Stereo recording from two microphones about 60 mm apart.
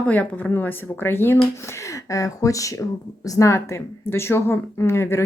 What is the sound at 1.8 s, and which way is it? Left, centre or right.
Speech, left.